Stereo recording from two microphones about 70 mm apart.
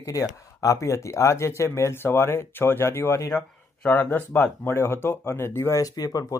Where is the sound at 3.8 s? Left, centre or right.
Left.